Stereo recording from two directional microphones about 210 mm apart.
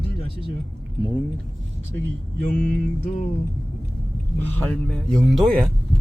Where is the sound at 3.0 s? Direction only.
35° left (ahead or behind).